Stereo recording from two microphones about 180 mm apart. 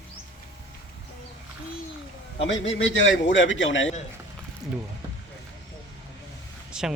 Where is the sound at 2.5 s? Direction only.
90° left.